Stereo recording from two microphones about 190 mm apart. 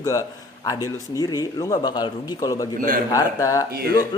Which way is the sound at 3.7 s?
55° right (ahead or behind).